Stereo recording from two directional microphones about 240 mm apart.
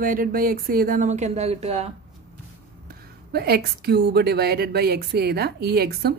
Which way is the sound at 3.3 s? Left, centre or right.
Right.